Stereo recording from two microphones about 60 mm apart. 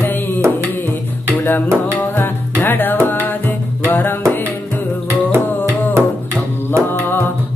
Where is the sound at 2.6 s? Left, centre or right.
Left.